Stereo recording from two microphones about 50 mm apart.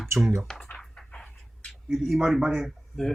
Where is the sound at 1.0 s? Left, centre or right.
Centre.